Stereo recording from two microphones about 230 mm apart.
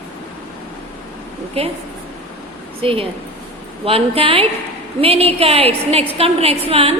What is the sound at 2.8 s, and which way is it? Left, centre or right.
A woman's voice, right.